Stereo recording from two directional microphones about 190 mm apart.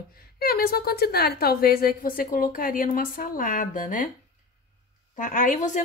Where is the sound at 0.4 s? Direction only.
55° left (ahead or behind).